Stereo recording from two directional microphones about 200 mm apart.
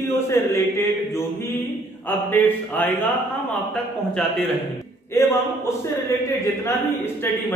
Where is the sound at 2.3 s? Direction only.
10° left (ahead or behind).